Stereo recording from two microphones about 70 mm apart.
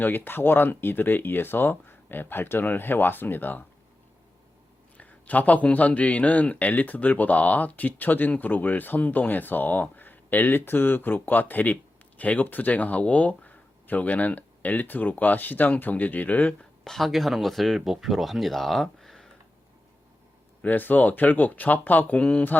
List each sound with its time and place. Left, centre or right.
0.0 s speech: left
4.9 s speech: left
16.8 s speech: centre
20.6 s speech: left